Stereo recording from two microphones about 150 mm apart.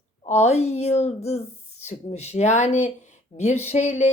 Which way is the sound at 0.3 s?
45° left (ahead or behind).